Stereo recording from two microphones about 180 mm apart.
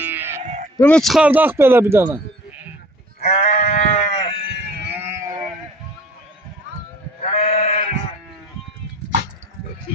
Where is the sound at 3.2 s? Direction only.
60° left (ahead or behind).